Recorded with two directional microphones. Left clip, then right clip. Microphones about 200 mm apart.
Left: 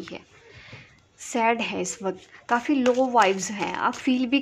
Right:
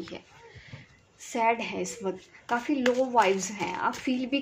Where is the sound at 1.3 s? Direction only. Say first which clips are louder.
Left 3 dB; 35° left (ahead or behind).